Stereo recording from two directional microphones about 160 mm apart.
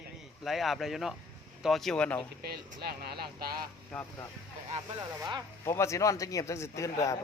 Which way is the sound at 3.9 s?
10° left (ahead or behind).